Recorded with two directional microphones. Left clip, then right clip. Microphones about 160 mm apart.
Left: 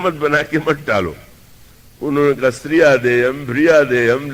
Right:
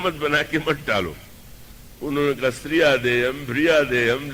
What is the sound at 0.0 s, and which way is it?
A man's voice, 35° right (ahead or behind).